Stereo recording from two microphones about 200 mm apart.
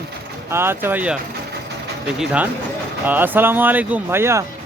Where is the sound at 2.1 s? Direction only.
5° right (ahead or behind).